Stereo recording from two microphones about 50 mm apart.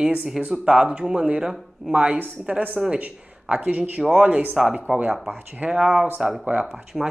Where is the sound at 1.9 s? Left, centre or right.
Right.